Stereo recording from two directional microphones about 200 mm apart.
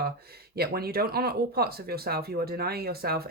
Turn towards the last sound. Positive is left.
turn(degrees=-50)  # may be behind; listen again after turning